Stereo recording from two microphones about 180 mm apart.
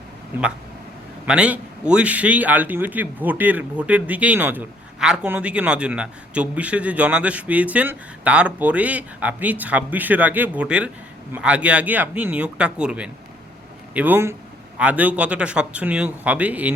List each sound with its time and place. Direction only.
0.3 s a man's voice: 10° right (ahead or behind)